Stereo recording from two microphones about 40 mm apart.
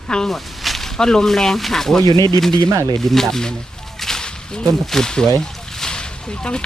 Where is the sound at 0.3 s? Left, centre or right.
Centre.